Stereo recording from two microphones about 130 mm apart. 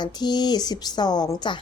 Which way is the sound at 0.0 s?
35° left (ahead or behind).